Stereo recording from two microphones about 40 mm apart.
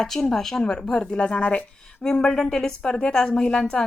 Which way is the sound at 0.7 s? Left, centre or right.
Left.